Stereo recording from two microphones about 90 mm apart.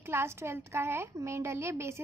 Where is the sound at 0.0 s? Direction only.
25° right (ahead or behind).